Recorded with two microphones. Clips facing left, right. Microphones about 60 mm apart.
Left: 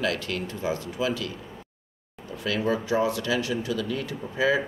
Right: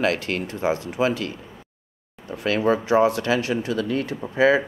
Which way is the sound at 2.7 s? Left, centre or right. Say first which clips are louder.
Right 7 dB; right.